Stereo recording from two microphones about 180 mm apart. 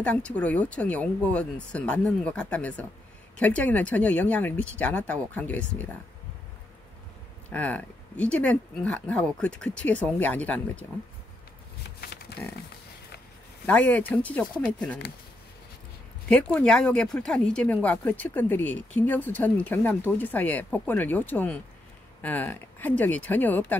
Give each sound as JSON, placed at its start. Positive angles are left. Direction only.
{"t": 0.0, "sound": "speech", "side_deg": 5}
{"t": 7.5, "sound": "speech", "side_deg": 10}
{"t": 12.0, "sound": "a sound", "side_deg": 60}
{"t": 13.7, "sound": "speech", "side_deg": 10}
{"t": 16.3, "sound": "speech", "side_deg": 5}